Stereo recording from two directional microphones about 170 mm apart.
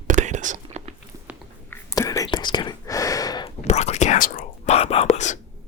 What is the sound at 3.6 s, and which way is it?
Whispering, 40° left (ahead or behind).